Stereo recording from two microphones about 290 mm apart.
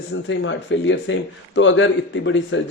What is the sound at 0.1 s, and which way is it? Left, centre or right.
Speech, left.